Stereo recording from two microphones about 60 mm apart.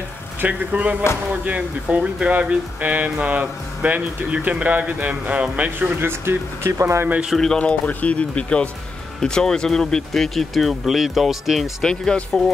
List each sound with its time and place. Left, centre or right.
0.4 s speech: right
5.9 s speech: right
6.8 s speech: right
7.5 s speech: left; by 11.7 s centre
11.8 s speech: centre